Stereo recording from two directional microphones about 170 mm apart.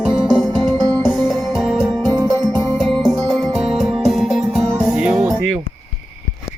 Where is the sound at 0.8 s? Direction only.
20° right (ahead or behind).